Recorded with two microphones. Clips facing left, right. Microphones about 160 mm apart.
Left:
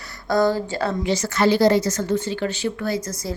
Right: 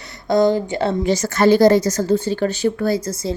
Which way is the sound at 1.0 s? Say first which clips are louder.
Right 4 dB; 45° right (ahead or behind).